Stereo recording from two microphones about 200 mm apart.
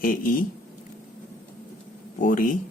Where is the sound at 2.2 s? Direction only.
40° left (ahead or behind).